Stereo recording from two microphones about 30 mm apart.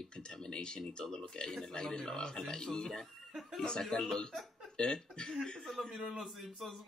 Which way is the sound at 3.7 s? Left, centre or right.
Left.